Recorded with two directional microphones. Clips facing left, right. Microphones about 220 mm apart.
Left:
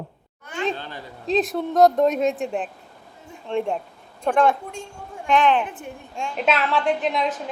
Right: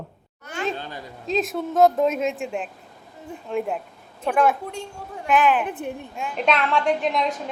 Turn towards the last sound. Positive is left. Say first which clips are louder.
# even
turn(degrees=0)  # may be behind; listen again after turning